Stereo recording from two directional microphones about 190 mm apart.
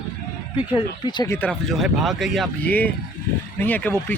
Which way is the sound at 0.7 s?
25° left (ahead or behind).